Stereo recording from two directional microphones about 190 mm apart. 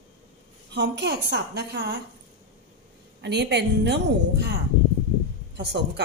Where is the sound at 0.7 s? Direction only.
65° right (ahead or behind).